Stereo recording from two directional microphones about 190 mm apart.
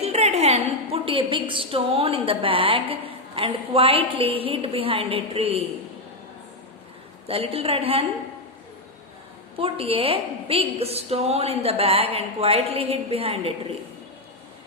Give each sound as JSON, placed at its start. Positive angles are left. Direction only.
{"t": 0.0, "sound": "a woman's voice", "side_deg": -35}
{"t": 7.3, "sound": "a woman's voice", "side_deg": -30}
{"t": 9.6, "sound": "a woman's voice", "side_deg": -30}